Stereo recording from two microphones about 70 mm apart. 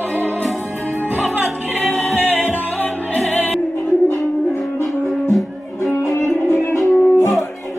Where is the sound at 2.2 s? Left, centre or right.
Right.